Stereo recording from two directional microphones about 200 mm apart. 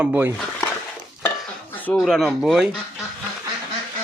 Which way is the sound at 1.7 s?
10° left (ahead or behind).